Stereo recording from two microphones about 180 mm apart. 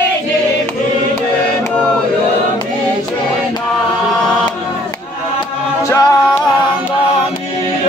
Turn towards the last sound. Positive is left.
turn(degrees=15)  # may be behind; listen again after turning